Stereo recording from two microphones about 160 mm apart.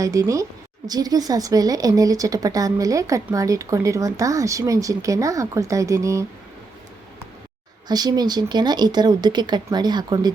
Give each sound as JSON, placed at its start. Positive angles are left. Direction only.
{"t": 0.0, "sound": "a woman's voice", "side_deg": -20}
{"t": 7.9, "sound": "a woman's voice", "side_deg": -25}